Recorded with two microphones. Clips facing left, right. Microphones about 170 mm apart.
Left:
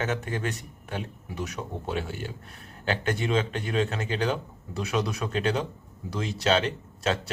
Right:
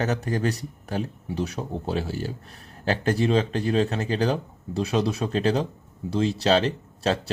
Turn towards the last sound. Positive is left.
turn(degrees=-35)  # may be behind; listen again after turning